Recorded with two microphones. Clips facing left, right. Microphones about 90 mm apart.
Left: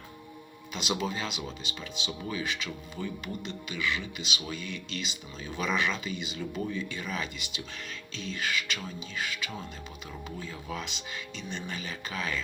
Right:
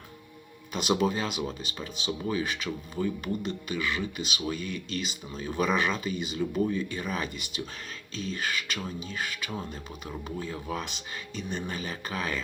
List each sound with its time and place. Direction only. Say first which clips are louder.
0.7 s speech: right 6 dB; 45° right (ahead or behind)